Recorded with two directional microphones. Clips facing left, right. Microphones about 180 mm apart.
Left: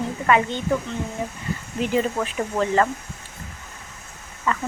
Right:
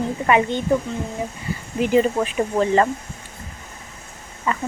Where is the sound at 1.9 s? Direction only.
20° right (ahead or behind).